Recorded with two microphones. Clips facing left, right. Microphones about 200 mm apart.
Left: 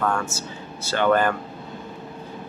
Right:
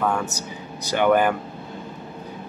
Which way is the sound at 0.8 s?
15° right (ahead or behind).